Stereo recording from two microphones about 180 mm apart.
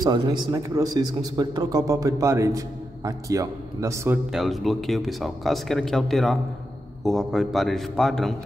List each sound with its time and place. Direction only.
0.0 s a man's voice: 25° right (ahead or behind)
4.3 s speech: centre (ahead or behind)